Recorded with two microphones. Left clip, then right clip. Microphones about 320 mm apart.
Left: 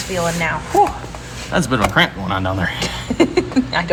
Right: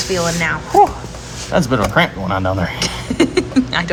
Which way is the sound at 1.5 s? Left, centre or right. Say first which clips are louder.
Right 1 dB; right.